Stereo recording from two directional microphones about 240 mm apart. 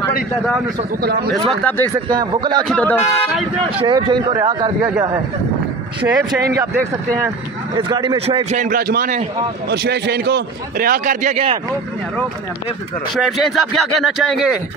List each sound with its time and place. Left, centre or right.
1.5 s speech: centre
2.0 s a man's voice: centre
2.7 s speech: centre
3.8 s a man's voice: centre
6.3 s a man's voice: centre
7.9 s a man's voice: centre
13.1 s speech: centre